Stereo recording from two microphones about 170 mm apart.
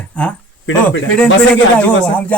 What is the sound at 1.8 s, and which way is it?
Speech, 10° left (ahead or behind).